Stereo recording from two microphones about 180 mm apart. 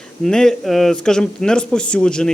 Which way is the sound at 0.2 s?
5° left (ahead or behind).